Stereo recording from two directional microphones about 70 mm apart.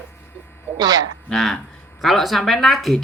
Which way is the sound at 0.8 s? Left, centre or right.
Right.